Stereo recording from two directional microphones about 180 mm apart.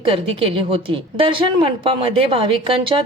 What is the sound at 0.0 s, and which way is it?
A woman's voice, 30° right (ahead or behind).